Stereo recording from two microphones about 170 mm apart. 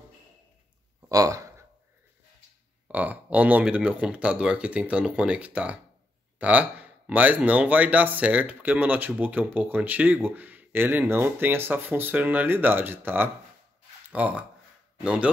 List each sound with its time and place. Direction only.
1.0 s speech: 20° right (ahead or behind)
2.9 s speech: 10° right (ahead or behind)